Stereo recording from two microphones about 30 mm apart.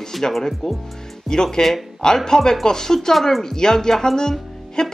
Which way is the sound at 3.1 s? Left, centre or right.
Centre.